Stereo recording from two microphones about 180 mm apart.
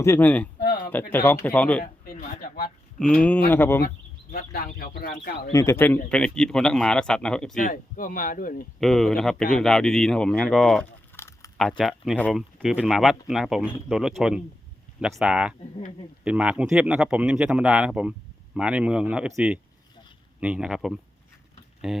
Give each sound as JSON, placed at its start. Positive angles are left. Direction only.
{"t": 0.0, "sound": "speech", "side_deg": 10}
{"t": 1.8, "sound": "a sound", "side_deg": 55}
{"t": 3.0, "sound": "speech", "side_deg": 5}
{"t": 4.3, "sound": "speech", "side_deg": 50}
{"t": 5.5, "sound": "speech", "side_deg": 15}
{"t": 7.5, "sound": "speech", "side_deg": 50}
{"t": 8.8, "sound": "speech", "side_deg": 0}
{"t": 11.2, "sound": "a sound", "side_deg": 15}
{"t": 11.8, "sound": "speech", "side_deg": 0}
{"t": 20.4, "sound": "speech", "side_deg": -5}